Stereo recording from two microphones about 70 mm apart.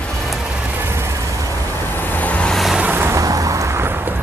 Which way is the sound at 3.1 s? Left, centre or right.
Right.